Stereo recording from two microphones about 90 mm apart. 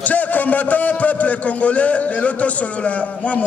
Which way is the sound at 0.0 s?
15° left (ahead or behind).